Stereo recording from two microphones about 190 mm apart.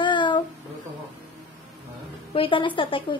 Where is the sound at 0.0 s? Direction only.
25° left (ahead or behind).